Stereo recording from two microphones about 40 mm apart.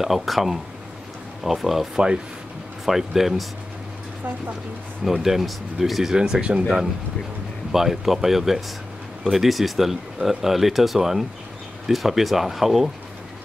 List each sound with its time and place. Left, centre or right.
0.0 s speech: centre
5.2 s speech: centre
6.1 s speech: right
7.7 s speech: centre